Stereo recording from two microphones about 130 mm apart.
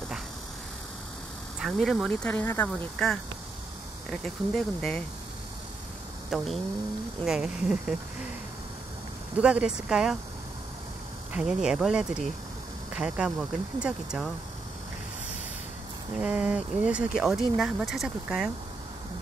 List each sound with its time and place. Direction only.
1.6 s speech: centre (ahead or behind)
2.2 s speech: 15° left (ahead or behind)
3.0 s speech: 5° left (ahead or behind)
6.3 s speech: centre (ahead or behind)
9.4 s speech: 10° right (ahead or behind)
11.3 s speech: 5° right (ahead or behind)
16.2 s speech: 5° right (ahead or behind)